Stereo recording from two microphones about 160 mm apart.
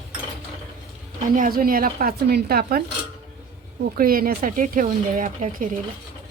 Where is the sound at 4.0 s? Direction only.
65° right (ahead or behind).